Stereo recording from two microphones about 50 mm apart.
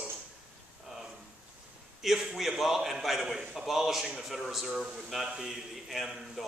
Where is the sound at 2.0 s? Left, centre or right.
Centre.